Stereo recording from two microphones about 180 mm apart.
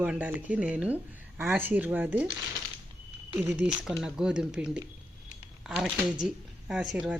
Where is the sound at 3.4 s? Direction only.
10° right (ahead or behind).